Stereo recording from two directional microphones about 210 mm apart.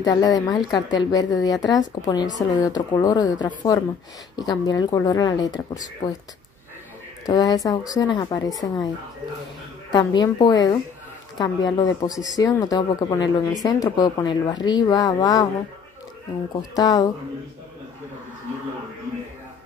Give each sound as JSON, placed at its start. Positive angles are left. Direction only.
{"t": 0.0, "sound": "speech", "side_deg": 15}
{"t": 7.2, "sound": "speech", "side_deg": 15}
{"t": 9.9, "sound": "speech", "side_deg": 20}
{"t": 16.7, "sound": "speech", "side_deg": 15}